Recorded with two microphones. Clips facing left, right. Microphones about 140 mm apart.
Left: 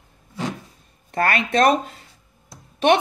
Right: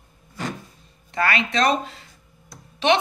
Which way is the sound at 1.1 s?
50° left (ahead or behind).